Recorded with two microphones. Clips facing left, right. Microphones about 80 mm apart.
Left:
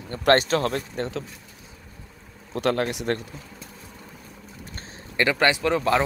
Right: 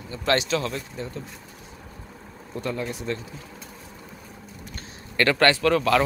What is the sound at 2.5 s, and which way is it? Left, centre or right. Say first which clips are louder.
Speech: left 6 dB; left.